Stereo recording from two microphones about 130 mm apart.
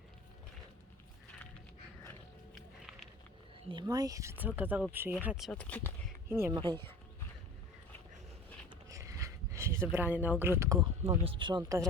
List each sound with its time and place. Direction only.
3.7 s speech: 35° right (ahead or behind); by 5.5 s 10° right (ahead or behind)
5.5 s speech: 10° left (ahead or behind)
6.2 s speech: 20° right (ahead or behind)
6.6 s speech: 40° right (ahead or behind)
8.9 s a sound: 25° right (ahead or behind)
11.2 s speech: 40° right (ahead or behind)